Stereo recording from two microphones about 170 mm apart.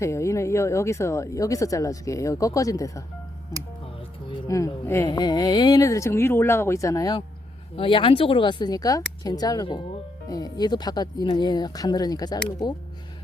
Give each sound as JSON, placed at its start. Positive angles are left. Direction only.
{"t": 0.0, "sound": "a woman's voice", "side_deg": 15}
{"t": 4.3, "sound": "speech", "side_deg": 20}
{"t": 7.8, "sound": "speech", "side_deg": 30}